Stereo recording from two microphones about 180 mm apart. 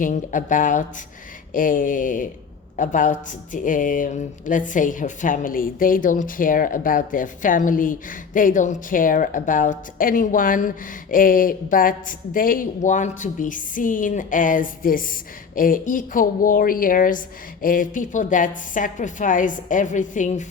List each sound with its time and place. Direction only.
0.0 s speech: 45° left (ahead or behind)